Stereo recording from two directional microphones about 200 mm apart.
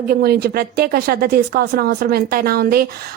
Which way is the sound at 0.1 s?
50° right (ahead or behind).